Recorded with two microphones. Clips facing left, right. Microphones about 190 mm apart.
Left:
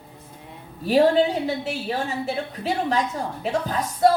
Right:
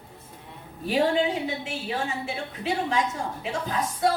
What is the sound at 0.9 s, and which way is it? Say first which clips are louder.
A woman's voice: left 6 dB; 40° left (ahead or behind).